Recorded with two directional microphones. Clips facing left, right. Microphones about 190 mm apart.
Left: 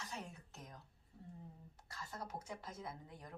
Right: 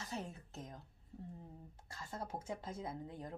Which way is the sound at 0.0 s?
30° right (ahead or behind).